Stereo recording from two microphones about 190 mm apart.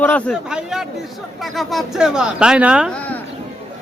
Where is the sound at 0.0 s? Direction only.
10° left (ahead or behind).